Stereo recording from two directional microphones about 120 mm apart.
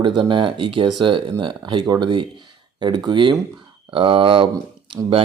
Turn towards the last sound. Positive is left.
turn(degrees=-45)  # may be behind; listen again after turning